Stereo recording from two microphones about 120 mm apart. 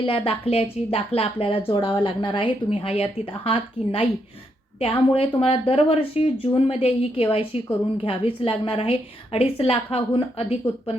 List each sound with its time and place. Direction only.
0.0 s speech: 50° left (ahead or behind)